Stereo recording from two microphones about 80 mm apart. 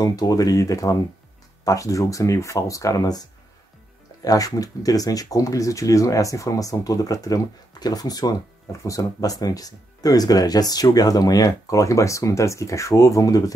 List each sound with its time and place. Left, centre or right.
0.0 s speech: left